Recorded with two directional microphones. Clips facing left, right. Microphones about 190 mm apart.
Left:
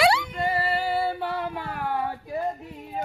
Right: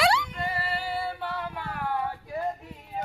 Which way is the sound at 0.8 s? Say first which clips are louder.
Left 6 dB; 40° left (ahead or behind).